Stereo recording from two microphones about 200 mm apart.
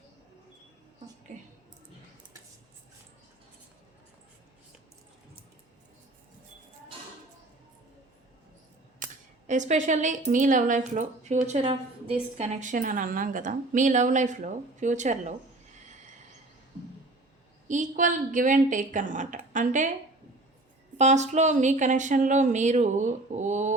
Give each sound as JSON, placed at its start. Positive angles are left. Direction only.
{"t": 1.3, "sound": "a woman's voice", "side_deg": -40}
{"t": 9.0, "sound": "a sound", "side_deg": -40}
{"t": 9.5, "sound": "a woman's voice", "side_deg": -35}
{"t": 17.7, "sound": "a woman's voice", "side_deg": -40}
{"t": 21.0, "sound": "a woman's voice", "side_deg": -35}